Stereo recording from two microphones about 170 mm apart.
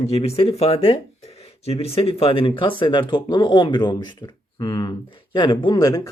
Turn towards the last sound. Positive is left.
turn(degrees=20)  # may be behind; listen again after turning